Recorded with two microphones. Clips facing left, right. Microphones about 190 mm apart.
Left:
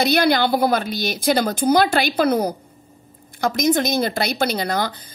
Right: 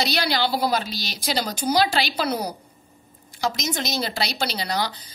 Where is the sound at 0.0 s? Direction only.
55° left (ahead or behind).